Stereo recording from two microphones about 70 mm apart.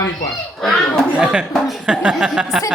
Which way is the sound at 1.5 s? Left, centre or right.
Centre.